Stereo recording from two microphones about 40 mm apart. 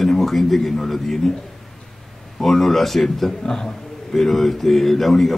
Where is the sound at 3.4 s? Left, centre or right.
Centre.